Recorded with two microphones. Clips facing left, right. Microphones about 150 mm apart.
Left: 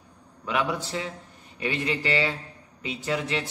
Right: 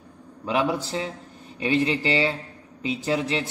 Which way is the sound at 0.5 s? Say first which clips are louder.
Right 3 dB; 30° right (ahead or behind).